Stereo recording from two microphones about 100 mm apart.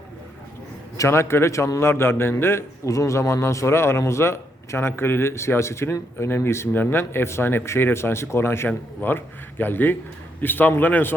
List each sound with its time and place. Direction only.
0.9 s a man's voice: 25° left (ahead or behind)